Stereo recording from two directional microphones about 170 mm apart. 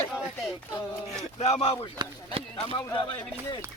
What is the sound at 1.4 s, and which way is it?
Speech, 35° left (ahead or behind).